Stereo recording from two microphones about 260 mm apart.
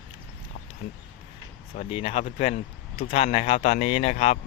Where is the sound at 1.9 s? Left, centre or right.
Left.